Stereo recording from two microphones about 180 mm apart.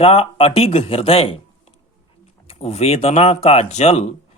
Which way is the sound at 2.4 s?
35° left (ahead or behind).